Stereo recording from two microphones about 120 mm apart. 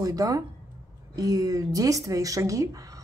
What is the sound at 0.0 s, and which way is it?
Speech, 30° right (ahead or behind).